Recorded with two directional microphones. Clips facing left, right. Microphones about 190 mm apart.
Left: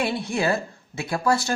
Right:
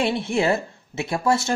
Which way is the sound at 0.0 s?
25° right (ahead or behind).